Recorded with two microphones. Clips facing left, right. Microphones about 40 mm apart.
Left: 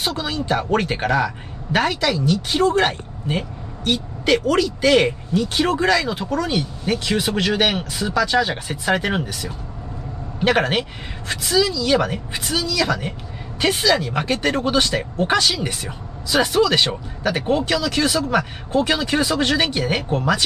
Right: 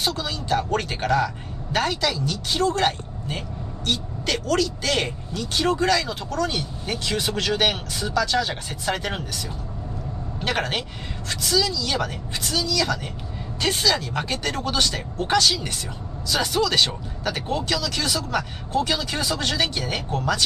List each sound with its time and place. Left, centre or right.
0.0 s speech: centre